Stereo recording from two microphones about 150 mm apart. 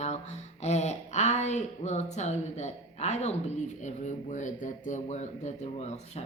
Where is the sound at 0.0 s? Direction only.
50° left (ahead or behind).